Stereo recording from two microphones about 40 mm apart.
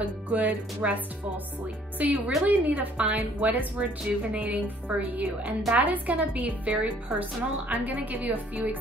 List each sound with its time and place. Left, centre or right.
0.0 s a woman's voice: right
2.0 s a woman's voice: right